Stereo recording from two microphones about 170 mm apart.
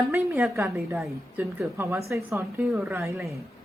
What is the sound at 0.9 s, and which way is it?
Speech, 5° right (ahead or behind).